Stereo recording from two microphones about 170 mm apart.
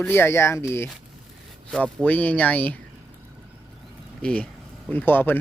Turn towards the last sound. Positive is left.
turn(degrees=10)  # may be behind; listen again after turning